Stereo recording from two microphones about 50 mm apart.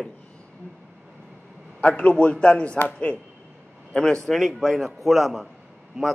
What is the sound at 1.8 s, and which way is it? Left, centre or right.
A man's voice, left.